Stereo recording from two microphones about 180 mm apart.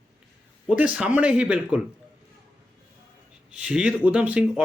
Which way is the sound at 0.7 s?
5° right (ahead or behind).